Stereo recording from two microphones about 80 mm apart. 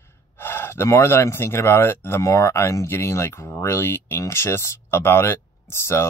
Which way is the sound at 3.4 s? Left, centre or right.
Left.